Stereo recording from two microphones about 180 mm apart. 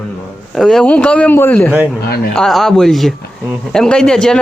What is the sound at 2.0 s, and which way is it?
Speech, 60° left (ahead or behind).